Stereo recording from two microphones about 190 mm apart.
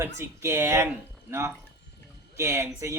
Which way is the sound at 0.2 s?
15° right (ahead or behind).